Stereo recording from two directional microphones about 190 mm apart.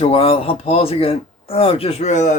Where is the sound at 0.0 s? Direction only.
30° left (ahead or behind).